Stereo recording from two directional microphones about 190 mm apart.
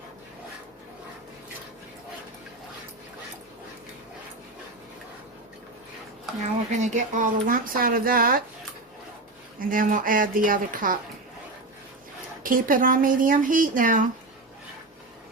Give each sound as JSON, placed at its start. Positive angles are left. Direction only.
{"t": 6.7, "sound": "speech", "side_deg": -40}
{"t": 9.6, "sound": "speech", "side_deg": -45}
{"t": 12.4, "sound": "speech", "side_deg": -45}